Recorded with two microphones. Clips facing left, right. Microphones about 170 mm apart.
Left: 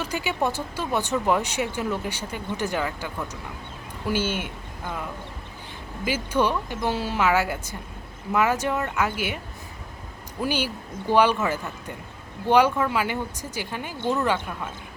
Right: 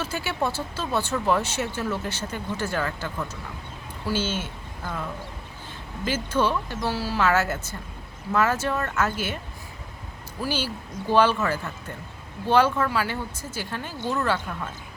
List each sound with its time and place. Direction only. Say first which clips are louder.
0.0 s speech: left 1 dB; 15° left (ahead or behind)
6.1 s speech: left 1 dB; 15° left (ahead or behind)
10.4 s speech: left 2 dB; 15° left (ahead or behind)